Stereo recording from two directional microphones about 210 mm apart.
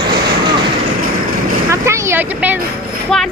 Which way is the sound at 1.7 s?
15° right (ahead or behind).